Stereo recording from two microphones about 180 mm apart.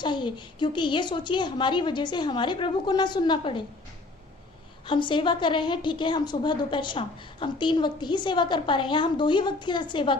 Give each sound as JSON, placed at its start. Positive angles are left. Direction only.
{"t": 0.0, "sound": "a woman's voice", "side_deg": 25}
{"t": 4.9, "sound": "a woman's voice", "side_deg": 25}